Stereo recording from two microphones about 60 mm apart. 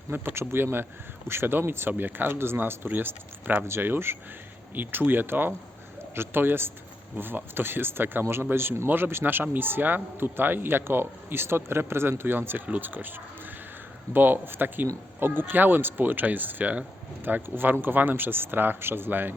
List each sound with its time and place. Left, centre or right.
0.1 s a man's voice: right